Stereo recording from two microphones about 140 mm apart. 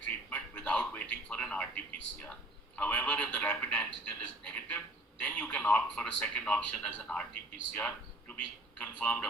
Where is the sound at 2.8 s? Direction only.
10° left (ahead or behind).